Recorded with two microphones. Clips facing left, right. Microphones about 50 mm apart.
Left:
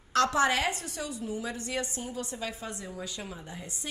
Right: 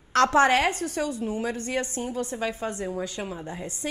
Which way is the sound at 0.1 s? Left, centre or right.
Right.